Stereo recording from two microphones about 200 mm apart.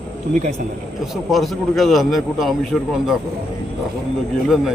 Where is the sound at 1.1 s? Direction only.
Centre (ahead or behind).